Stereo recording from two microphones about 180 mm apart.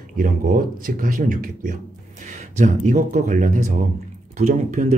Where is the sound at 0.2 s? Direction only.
50° right (ahead or behind).